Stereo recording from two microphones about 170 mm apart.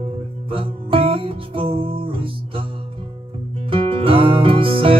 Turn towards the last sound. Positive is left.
turn(degrees=-30)  # may be behind; listen again after turning